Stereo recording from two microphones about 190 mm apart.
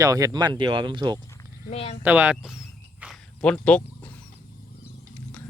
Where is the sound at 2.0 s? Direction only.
5° right (ahead or behind).